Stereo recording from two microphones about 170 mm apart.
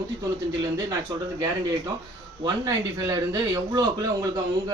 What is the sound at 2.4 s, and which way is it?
Speech, 20° right (ahead or behind).